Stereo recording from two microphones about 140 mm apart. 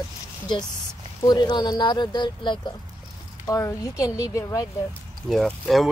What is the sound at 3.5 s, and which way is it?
A woman's voice, 25° left (ahead or behind).